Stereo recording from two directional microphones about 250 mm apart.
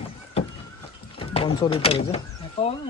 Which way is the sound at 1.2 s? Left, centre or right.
Left.